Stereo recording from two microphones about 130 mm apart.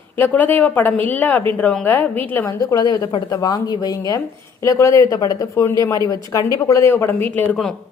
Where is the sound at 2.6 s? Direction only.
30° left (ahead or behind).